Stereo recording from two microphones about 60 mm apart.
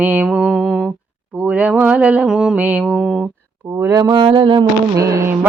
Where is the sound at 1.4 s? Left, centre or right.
Right.